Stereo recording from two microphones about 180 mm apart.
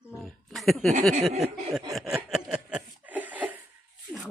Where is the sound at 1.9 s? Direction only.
Centre (ahead or behind).